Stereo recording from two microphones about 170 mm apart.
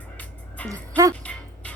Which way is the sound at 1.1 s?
10° left (ahead or behind).